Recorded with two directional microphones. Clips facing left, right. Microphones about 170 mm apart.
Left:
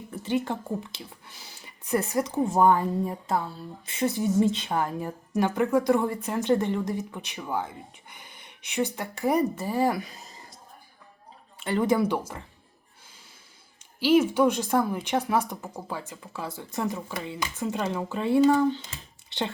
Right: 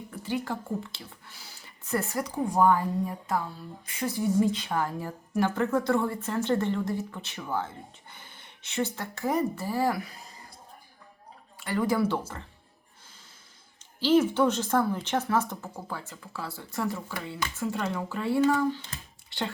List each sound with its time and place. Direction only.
0.1 s speech: 20° left (ahead or behind)
11.6 s speech: 25° left (ahead or behind)
14.0 s speech: 10° left (ahead or behind)